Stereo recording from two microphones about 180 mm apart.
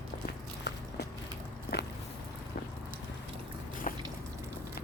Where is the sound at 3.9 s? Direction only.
45° left (ahead or behind).